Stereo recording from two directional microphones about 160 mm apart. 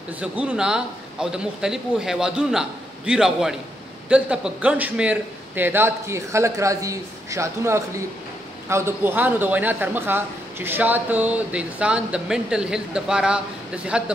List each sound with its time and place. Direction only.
0.2 s a man's voice: 5° right (ahead or behind)